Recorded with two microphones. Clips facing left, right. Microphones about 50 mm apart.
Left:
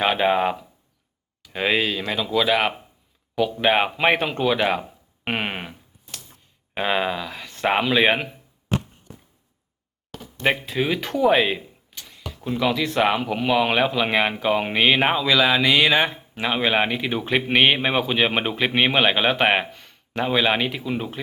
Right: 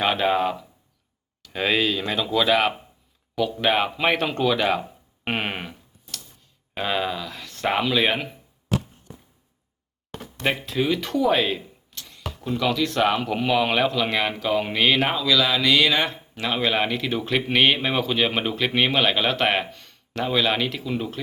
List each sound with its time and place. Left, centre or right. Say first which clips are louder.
0.0 s speech: left 2 dB; centre
6.7 s speech: left 3 dB; centre
10.4 s speech: left 1 dB; centre